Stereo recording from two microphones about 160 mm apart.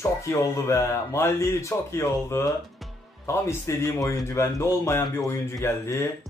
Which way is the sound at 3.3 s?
15° left (ahead or behind).